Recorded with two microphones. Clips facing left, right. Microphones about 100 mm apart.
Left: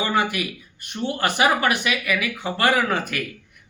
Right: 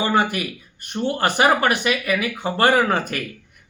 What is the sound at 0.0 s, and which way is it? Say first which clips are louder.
Speech: right 2 dB; 35° right (ahead or behind).